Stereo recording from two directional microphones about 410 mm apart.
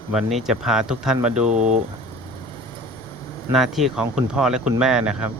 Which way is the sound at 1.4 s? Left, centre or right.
Centre.